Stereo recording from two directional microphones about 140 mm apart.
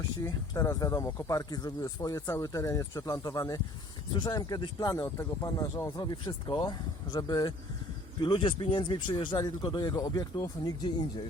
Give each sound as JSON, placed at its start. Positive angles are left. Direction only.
{"t": 0.2, "sound": "speech", "side_deg": 20}